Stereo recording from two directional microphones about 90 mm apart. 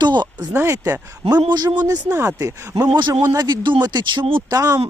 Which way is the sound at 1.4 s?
55° right (ahead or behind).